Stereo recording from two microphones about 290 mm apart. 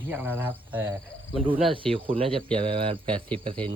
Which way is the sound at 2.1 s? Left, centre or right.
Centre.